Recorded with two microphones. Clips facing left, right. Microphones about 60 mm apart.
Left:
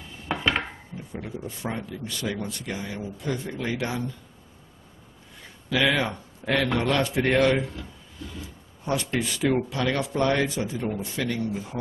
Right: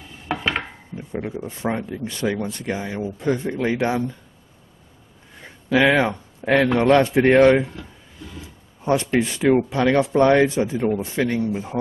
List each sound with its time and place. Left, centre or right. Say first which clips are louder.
0.3 s a sound: right 1 dB; centre
0.9 s speech: right 8 dB; right
5.4 s speech: right 7 dB; right